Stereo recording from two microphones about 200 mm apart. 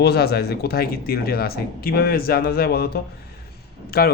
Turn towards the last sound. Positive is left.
turn(degrees=50)  # may be behind; listen again after turning